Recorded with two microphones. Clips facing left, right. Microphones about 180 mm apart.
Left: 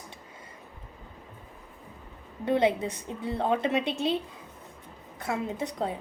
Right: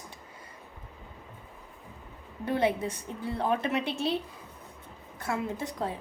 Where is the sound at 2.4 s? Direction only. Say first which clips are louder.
Left 3 dB; 20° left (ahead or behind).